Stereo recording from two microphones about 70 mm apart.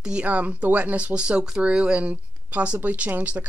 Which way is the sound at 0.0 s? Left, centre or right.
Centre.